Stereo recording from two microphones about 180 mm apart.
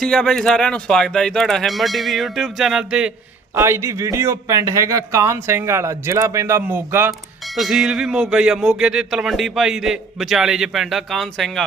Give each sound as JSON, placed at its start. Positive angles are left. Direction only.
{"t": 0.0, "sound": "speech", "side_deg": 5}
{"t": 3.5, "sound": "a man's voice", "side_deg": -15}